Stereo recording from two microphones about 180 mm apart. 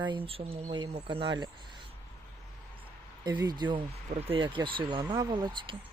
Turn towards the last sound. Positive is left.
turn(degrees=-25)  # may be behind; listen again after turning